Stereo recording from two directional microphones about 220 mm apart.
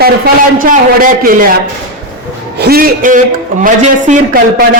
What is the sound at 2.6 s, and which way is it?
A man's voice, 45° right (ahead or behind).